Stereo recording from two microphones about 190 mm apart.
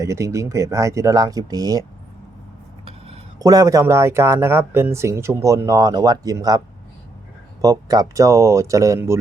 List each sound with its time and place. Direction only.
0.0 s speech: 15° right (ahead or behind)
3.3 s speech: 20° right (ahead or behind)
7.6 s speech: 20° right (ahead or behind)